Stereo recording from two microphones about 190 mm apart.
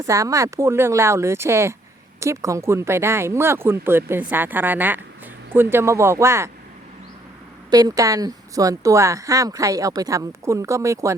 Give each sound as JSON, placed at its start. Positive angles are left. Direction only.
{"t": 0.0, "sound": "speech", "side_deg": -15}
{"t": 7.7, "sound": "speech", "side_deg": -20}